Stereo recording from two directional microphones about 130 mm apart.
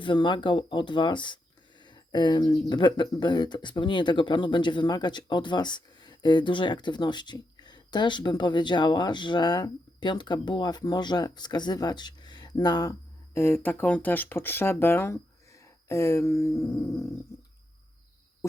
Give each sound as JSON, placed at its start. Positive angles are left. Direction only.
{"t": 0.0, "sound": "speech", "side_deg": 35}